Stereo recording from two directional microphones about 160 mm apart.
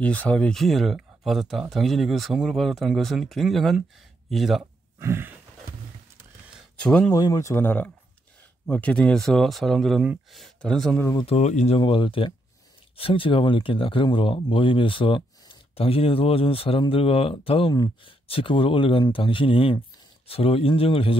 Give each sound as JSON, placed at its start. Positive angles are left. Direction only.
{"t": 0.0, "sound": "speech", "side_deg": 10}
{"t": 4.9, "sound": "a sound", "side_deg": -15}
{"t": 6.8, "sound": "speech", "side_deg": 5}
{"t": 7.1, "sound": "speech", "side_deg": 20}
{"t": 11.2, "sound": "speech", "side_deg": 45}